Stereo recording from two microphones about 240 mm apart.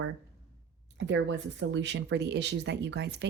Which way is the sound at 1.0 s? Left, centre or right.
Right.